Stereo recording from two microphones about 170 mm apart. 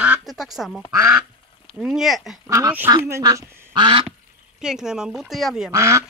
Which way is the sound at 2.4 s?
15° right (ahead or behind).